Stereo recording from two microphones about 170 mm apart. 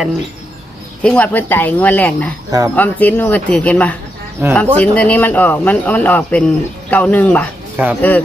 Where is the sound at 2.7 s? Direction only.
10° left (ahead or behind).